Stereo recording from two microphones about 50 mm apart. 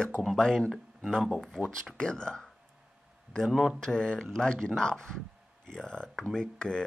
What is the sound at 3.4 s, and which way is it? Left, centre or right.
Speech, centre.